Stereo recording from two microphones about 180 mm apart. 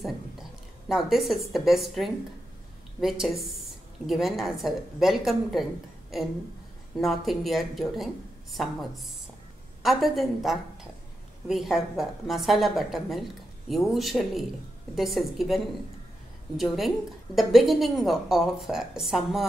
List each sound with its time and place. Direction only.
0.0 s a woman's voice: centre (ahead or behind)
7.0 s a woman's voice: centre (ahead or behind)